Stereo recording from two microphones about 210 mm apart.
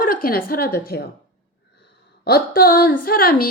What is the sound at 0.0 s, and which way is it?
A woman's voice, 45° left (ahead or behind).